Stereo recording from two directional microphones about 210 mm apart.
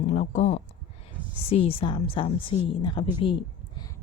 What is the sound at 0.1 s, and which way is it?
A woman's voice, 35° left (ahead or behind).